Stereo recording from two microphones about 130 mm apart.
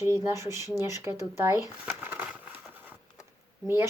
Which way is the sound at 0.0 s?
20° right (ahead or behind).